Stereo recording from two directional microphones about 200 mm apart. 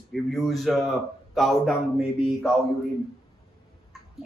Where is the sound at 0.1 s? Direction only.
Centre (ahead or behind).